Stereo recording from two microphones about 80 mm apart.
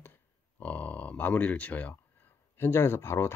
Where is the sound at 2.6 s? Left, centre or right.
Left.